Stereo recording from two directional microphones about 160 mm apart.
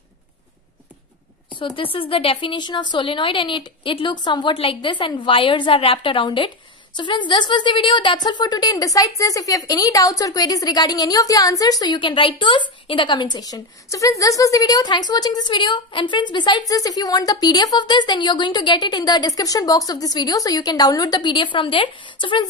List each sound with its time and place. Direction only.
1.6 s a woman's voice: 35° left (ahead or behind)